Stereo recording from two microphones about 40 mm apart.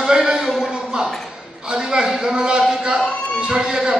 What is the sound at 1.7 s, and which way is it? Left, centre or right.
A man's voice, centre.